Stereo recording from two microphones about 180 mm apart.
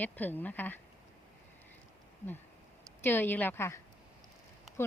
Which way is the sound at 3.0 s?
10° left (ahead or behind).